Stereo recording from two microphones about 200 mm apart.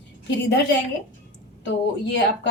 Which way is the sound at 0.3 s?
60° left (ahead or behind).